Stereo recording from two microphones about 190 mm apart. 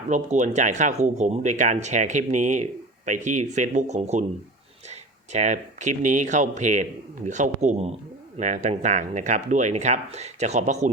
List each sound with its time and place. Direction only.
0.1 s speech: 40° right (ahead or behind)